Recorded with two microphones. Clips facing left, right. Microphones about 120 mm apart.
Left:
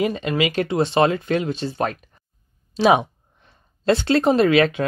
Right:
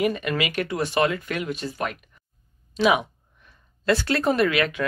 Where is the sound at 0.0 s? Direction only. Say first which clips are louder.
Left 3 dB; 25° left (ahead or behind).